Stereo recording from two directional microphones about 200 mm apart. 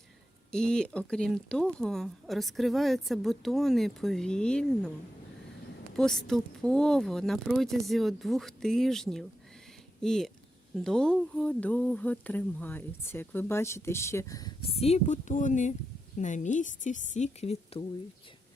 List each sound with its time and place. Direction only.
0.5 s speech: 5° left (ahead or behind)
6.0 s a woman's voice: centre (ahead or behind); by 17.8 s 30° left (ahead or behind)